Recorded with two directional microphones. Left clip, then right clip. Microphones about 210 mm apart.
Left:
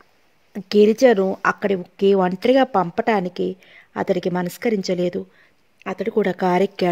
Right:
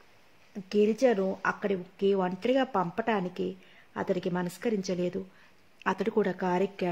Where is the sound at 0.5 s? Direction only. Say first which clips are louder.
Left 11 dB; 40° left (ahead or behind).